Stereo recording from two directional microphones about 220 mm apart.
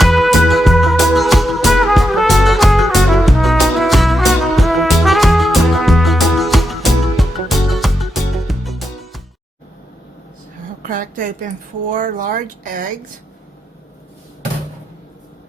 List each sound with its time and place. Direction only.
0.0 s music: centre (ahead or behind)
10.8 s a sound: 40° right (ahead or behind)
11.9 s speech: 35° right (ahead or behind)